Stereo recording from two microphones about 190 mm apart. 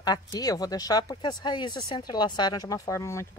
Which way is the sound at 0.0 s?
20° left (ahead or behind).